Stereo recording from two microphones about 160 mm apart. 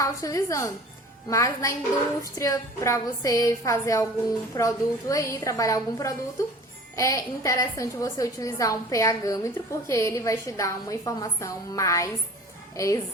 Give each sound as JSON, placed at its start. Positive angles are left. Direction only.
{"t": 0.0, "sound": "a woman's voice", "side_deg": 20}